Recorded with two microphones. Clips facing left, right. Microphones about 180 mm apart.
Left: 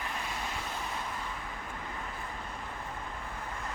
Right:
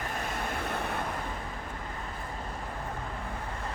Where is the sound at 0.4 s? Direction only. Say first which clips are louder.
Right 5 dB; 55° right (ahead or behind).